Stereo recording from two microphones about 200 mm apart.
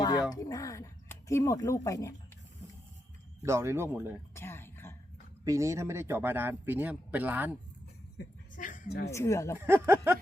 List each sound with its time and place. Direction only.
0.3 s speech: 20° left (ahead or behind)
3.4 s speech: 15° right (ahead or behind)
4.4 s throat clearing: 10° left (ahead or behind)
5.5 s speech: 15° right (ahead or behind)
8.5 s a sound: 40° left (ahead or behind)
9.0 s speech: 15° left (ahead or behind)
9.6 s speech: 10° right (ahead or behind)